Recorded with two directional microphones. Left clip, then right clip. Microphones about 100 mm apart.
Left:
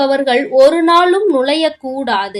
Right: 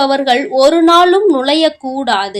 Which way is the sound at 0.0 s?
25° right (ahead or behind).